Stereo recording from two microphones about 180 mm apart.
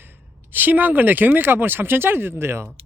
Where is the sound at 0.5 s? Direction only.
10° right (ahead or behind).